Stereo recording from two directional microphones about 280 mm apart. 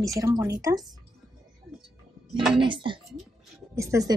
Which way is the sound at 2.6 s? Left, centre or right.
Centre.